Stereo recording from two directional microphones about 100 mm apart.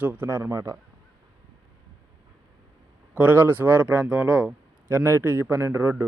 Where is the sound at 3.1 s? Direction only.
15° right (ahead or behind).